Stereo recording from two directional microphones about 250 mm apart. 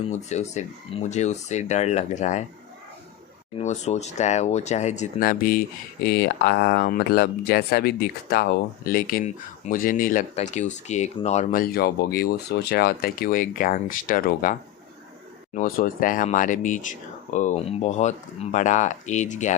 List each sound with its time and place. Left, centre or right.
0.0 s speech: left
3.6 s speech: left
15.5 s speech: left